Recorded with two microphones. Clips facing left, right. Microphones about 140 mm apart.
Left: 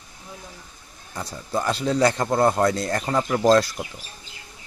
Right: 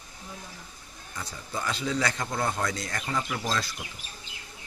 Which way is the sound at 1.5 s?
45° left (ahead or behind).